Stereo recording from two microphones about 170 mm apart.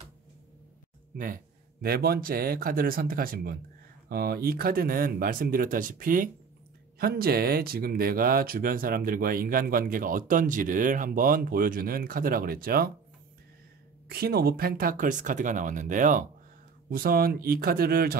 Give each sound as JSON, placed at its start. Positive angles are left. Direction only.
{"t": 1.1, "sound": "speech", "side_deg": -55}
{"t": 7.0, "sound": "speech", "side_deg": -65}
{"t": 14.0, "sound": "speech", "side_deg": -65}